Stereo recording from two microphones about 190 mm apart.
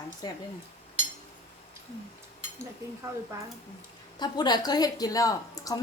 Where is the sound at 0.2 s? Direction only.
25° left (ahead or behind).